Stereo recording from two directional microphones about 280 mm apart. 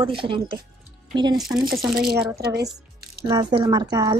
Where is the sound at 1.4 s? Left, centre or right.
Centre.